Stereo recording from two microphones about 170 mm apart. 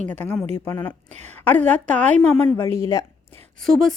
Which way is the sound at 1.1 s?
40° right (ahead or behind).